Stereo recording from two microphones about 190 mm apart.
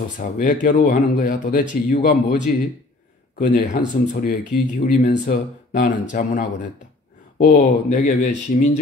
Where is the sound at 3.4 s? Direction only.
45° left (ahead or behind).